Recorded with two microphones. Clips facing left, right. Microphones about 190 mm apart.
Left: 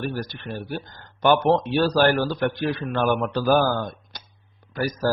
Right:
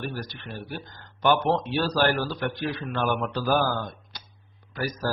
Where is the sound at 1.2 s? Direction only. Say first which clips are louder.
Left 4 dB; 50° left (ahead or behind).